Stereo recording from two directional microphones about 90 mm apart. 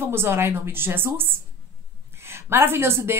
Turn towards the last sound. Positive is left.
turn(degrees=-25)  # may be behind; listen again after turning